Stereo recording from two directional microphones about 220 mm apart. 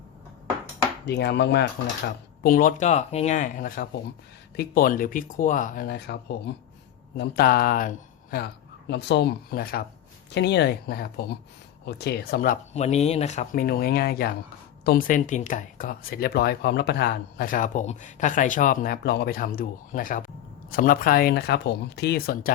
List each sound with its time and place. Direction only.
1.0 s speech: 50° left (ahead or behind)
2.4 s speech: 40° left (ahead or behind)
8.9 s speech: 50° left (ahead or behind)